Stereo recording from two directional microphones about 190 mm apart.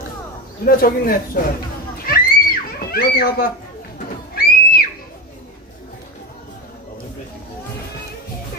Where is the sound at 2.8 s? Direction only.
50° left (ahead or behind).